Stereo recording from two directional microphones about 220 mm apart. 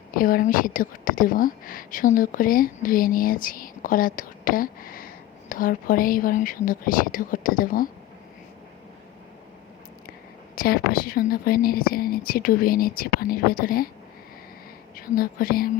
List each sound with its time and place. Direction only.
0.1 s speech: 40° left (ahead or behind)
10.5 s speech: 45° left (ahead or behind)
14.9 s speech: 40° left (ahead or behind)